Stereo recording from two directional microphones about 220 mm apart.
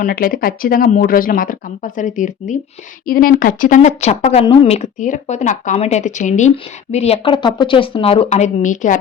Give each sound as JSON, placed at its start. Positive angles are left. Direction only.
{"t": 0.0, "sound": "speech", "side_deg": 40}